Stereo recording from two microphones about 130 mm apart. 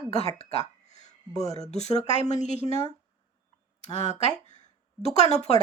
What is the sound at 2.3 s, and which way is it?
Speech, 65° left (ahead or behind).